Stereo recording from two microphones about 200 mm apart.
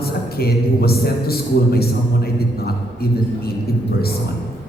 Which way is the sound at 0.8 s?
50° left (ahead or behind).